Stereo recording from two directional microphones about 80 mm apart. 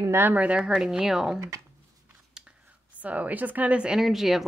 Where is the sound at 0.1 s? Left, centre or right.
Right; by 1.4 s centre.